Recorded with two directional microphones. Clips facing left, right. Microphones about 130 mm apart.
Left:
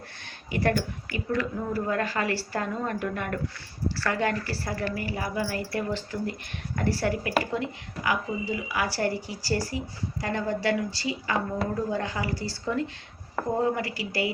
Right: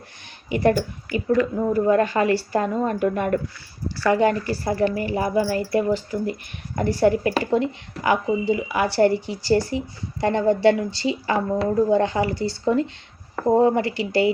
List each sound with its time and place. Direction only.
1.1 s speech: 25° right (ahead or behind)
5.9 s speech: 15° right (ahead or behind)